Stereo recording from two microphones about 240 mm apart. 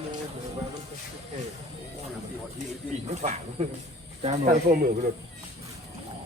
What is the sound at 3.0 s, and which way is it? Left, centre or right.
Speech, right.